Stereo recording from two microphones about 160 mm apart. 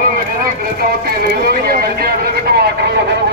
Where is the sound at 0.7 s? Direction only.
70° right (ahead or behind).